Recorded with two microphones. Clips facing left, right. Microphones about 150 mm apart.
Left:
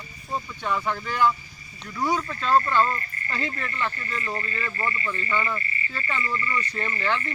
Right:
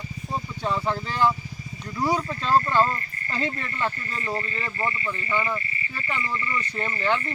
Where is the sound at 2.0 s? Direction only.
10° right (ahead or behind).